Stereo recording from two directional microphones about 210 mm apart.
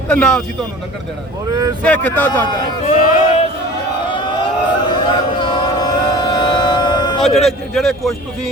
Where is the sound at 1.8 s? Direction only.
5° left (ahead or behind).